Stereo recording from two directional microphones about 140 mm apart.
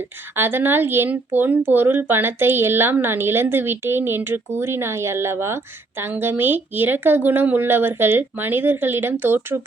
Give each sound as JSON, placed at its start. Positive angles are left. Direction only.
{"t": 0.3, "sound": "speech", "side_deg": -15}